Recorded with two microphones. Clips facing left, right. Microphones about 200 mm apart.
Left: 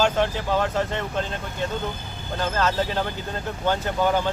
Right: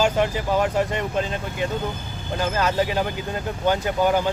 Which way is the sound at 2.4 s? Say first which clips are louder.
Right 2 dB; 10° right (ahead or behind).